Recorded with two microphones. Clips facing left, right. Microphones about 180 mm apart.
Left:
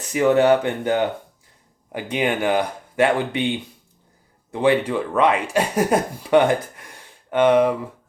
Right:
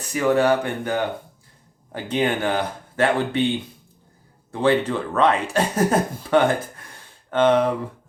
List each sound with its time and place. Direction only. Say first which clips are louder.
0.0 s speech: left 2 dB; 20° left (ahead or behind)